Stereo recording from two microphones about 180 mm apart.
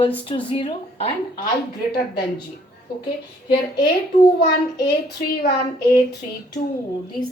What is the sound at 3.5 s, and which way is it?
Speech, 65° left (ahead or behind).